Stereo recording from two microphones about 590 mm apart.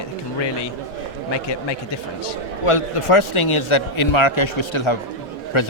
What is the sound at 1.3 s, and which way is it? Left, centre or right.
Speech, left.